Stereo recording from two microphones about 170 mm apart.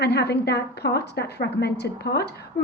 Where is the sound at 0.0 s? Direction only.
75° left (ahead or behind).